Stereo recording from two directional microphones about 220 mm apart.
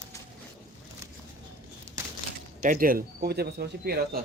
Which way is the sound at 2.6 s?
40° right (ahead or behind).